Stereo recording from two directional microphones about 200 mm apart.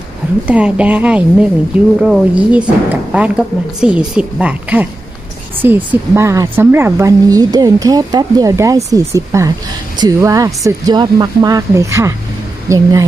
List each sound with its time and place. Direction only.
0.5 s a woman's voice: 5° right (ahead or behind)